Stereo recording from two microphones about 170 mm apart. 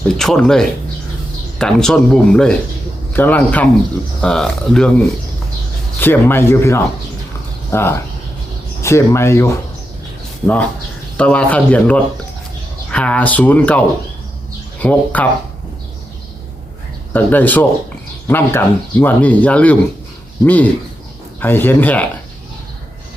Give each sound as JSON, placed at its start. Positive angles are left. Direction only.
{"t": 0.2, "sound": "speech", "side_deg": 5}
{"t": 6.0, "sound": "speech", "side_deg": 15}
{"t": 17.1, "sound": "speech", "side_deg": 10}